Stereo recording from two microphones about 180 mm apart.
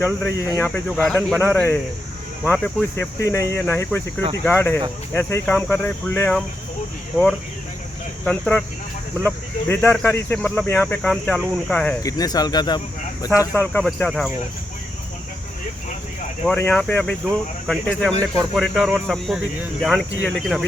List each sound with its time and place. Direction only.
0.0 s speech: 10° left (ahead or behind)
8.2 s speech: 5° left (ahead or behind)
12.0 s speech: 20° left (ahead or behind)
13.6 s speech: 5° left (ahead or behind)
16.6 s speech: 5° left (ahead or behind)